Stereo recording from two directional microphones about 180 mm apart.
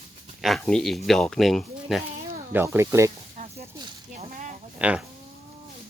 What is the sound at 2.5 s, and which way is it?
Speech, 15° right (ahead or behind).